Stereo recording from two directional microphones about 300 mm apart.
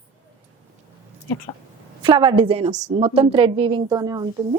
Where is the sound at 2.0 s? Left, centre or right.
Centre.